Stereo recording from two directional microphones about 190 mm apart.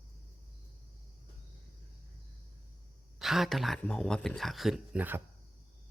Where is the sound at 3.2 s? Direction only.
Centre (ahead or behind).